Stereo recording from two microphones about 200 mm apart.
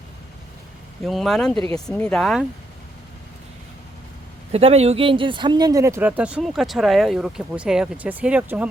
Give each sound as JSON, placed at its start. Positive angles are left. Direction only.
{"t": 1.0, "sound": "speech", "side_deg": 0}
{"t": 1.5, "sound": "speech", "side_deg": -25}
{"t": 1.9, "sound": "speech", "side_deg": 5}
{"t": 4.5, "sound": "speech", "side_deg": -30}